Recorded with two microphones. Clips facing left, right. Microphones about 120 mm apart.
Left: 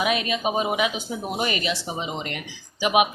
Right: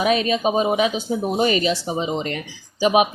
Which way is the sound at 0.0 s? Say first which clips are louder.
Right 5 dB; 35° right (ahead or behind).